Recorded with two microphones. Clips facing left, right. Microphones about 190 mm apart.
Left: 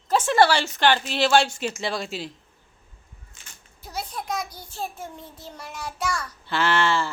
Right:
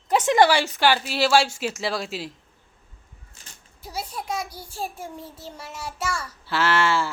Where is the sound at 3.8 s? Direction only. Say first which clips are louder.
Even; 10° right (ahead or behind).